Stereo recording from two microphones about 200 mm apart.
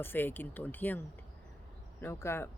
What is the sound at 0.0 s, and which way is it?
Speech, 10° left (ahead or behind).